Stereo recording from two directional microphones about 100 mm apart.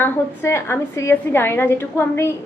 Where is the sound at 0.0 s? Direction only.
25° left (ahead or behind).